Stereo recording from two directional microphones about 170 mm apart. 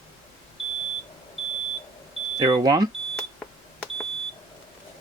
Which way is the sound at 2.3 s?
25° right (ahead or behind).